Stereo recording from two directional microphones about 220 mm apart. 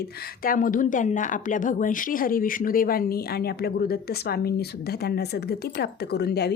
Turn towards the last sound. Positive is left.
turn(degrees=50)  # may be behind; listen again after turning